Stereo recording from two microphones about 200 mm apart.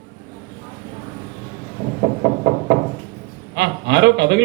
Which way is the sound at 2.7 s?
55° right (ahead or behind).